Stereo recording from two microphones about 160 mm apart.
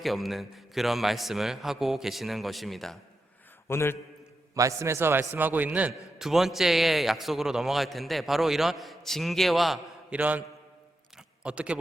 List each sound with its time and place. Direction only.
0.0 s a man's voice: centre (ahead or behind)
3.7 s a man's voice: 15° left (ahead or behind)
4.5 s a man's voice: 20° right (ahead or behind)
11.4 s a man's voice: 5° right (ahead or behind)